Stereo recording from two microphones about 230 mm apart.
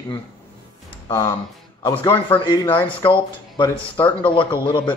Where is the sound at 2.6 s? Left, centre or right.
Centre.